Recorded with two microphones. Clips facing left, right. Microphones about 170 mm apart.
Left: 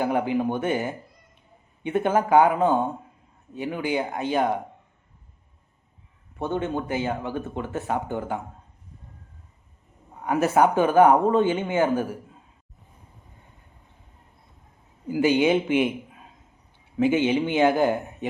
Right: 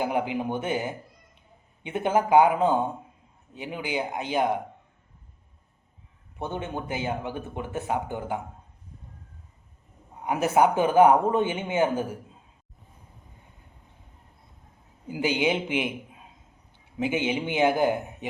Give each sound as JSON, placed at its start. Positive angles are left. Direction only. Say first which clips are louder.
{"t": 0.0, "sound": "speech", "louder": "left 3 dB", "side_deg": -15}
{"t": 6.4, "sound": "speech", "louder": "left 5 dB", "side_deg": -15}
{"t": 10.2, "sound": "speech", "louder": "left 2 dB", "side_deg": -15}
{"t": 15.1, "sound": "speech", "louder": "left 5 dB", "side_deg": -15}
{"t": 17.0, "sound": "speech", "louder": "left 6 dB", "side_deg": -15}